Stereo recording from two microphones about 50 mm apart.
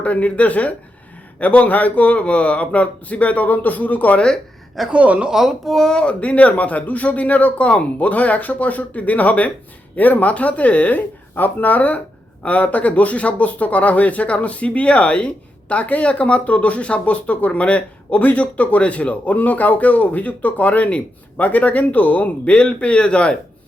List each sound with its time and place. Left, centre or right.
0.0 s speech: left
4.9 s speech: right
5.3 s speech: centre
5.7 s speech: centre
6.0 s speech: left